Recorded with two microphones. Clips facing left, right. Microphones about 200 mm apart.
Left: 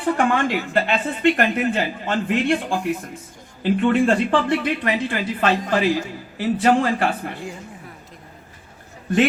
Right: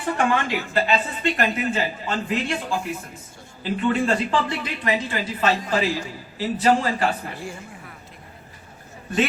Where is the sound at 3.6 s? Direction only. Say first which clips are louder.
Left 5 dB; 55° left (ahead or behind).